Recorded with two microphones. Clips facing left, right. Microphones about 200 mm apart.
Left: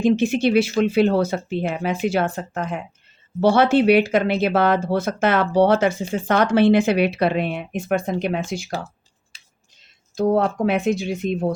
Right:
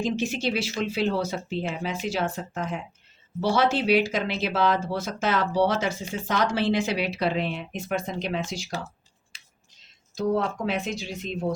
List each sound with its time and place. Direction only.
0.0 s speech: 55° left (ahead or behind)
10.2 s speech: 55° left (ahead or behind)